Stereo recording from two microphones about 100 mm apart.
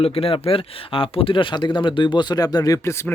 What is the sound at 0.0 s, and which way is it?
Speech, 70° left (ahead or behind).